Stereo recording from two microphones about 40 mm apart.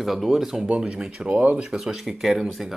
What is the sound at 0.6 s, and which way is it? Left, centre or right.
Speech, right.